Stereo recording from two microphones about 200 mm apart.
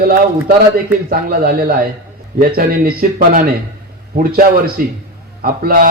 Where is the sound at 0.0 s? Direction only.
50° right (ahead or behind).